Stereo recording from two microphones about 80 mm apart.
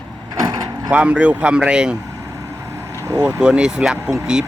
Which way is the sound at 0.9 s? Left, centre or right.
Centre.